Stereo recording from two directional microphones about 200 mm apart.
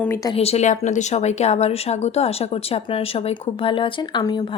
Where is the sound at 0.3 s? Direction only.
30° left (ahead or behind).